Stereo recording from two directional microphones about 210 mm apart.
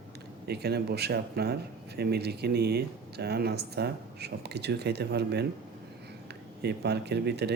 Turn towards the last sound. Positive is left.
turn(degrees=-50)  # may be behind; listen again after turning